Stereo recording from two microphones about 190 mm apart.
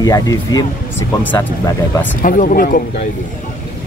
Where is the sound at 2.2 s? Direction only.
45° left (ahead or behind).